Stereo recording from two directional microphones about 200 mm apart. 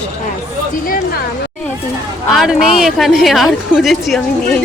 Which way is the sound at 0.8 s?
45° left (ahead or behind).